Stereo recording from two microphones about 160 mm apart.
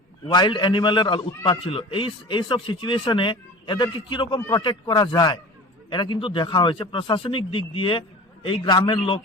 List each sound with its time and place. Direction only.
0.3 s a man's voice: 30° left (ahead or behind)